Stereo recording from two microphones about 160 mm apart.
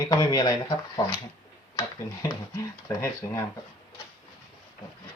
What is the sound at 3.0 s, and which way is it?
Speech, 20° left (ahead or behind).